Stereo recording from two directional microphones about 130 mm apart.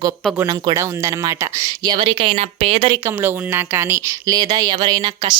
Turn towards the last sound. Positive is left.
turn(degrees=-30)  # may be behind; listen again after turning